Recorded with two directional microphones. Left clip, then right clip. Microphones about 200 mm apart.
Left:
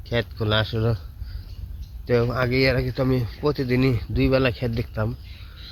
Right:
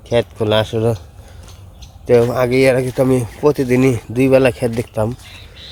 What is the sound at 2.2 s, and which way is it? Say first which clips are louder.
Speech: right 8 dB; 15° right (ahead or behind).